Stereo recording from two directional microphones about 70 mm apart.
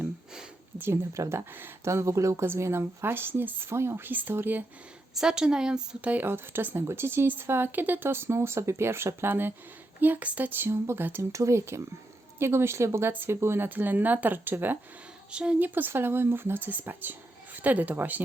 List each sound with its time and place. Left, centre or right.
0.8 s speech: right
5.1 s a woman's voice: centre
6.1 s speech: right
11.2 s speech: right
13.7 s speech: right
15.3 s a woman's voice: centre
15.6 s speech: right